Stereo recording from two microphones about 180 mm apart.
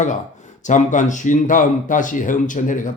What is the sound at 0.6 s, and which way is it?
A man's voice, 45° left (ahead or behind).